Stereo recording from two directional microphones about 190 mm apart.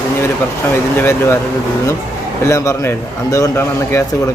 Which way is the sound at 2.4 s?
15° left (ahead or behind).